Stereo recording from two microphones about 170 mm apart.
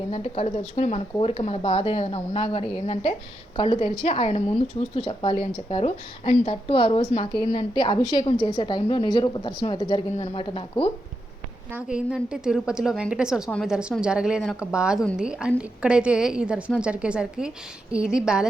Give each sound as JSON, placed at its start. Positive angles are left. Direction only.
{"t": 0.1, "sound": "speech", "side_deg": 35}
{"t": 5.7, "sound": "a woman's voice", "side_deg": 40}
{"t": 11.7, "sound": "a woman's voice", "side_deg": -5}